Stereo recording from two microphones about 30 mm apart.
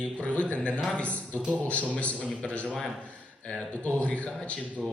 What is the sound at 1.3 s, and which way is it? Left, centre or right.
Speech, right.